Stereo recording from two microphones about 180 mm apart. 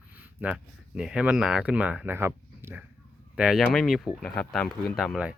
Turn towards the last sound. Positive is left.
turn(degrees=0)  # may be behind; listen again after turning